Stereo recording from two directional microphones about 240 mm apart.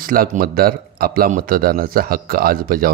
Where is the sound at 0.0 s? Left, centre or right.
Right.